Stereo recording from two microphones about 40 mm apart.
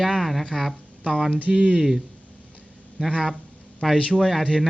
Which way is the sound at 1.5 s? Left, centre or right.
Right.